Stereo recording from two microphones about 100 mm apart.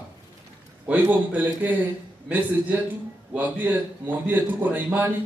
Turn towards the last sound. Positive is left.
turn(degrees=-20)  # may be behind; listen again after turning